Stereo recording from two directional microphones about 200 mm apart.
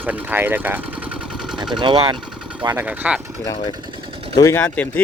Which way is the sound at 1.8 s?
25° right (ahead or behind).